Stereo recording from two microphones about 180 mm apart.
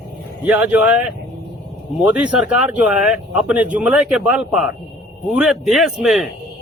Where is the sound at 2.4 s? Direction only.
5° right (ahead or behind).